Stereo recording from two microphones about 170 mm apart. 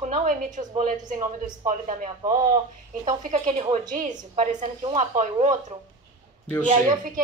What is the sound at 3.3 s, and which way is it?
Speech, 35° right (ahead or behind).